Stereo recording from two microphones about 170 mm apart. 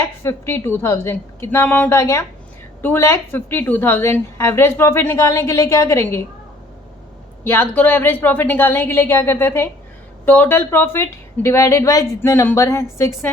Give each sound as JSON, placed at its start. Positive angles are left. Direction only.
{"t": 0.2, "sound": "a woman's voice", "side_deg": 15}
{"t": 7.4, "sound": "a woman's voice", "side_deg": 15}